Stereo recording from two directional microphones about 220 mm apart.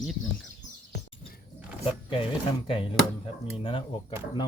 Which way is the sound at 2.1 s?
25° left (ahead or behind).